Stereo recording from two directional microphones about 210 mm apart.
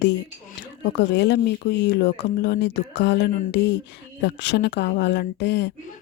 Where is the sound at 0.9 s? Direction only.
55° left (ahead or behind).